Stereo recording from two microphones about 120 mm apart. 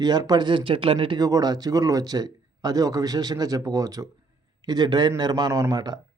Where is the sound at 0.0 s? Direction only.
35° right (ahead or behind).